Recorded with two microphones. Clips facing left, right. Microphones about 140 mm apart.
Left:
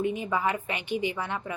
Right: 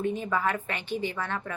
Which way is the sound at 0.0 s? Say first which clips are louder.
Even; 15° left (ahead or behind).